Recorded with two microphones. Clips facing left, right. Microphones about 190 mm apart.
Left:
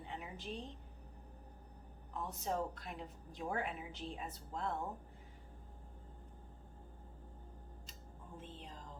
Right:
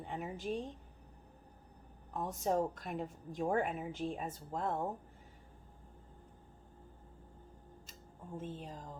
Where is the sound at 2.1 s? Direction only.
45° right (ahead or behind).